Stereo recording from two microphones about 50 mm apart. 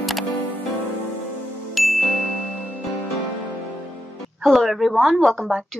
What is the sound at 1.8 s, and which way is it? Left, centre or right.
Ding, centre.